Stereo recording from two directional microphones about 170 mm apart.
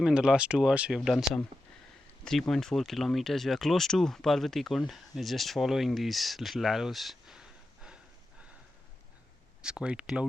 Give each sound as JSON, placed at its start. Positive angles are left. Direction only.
{"t": 0.0, "sound": "speech", "side_deg": -5}
{"t": 9.6, "sound": "speech", "side_deg": -5}